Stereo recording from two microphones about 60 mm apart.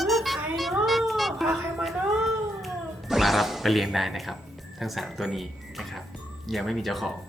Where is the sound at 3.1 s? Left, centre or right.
Centre.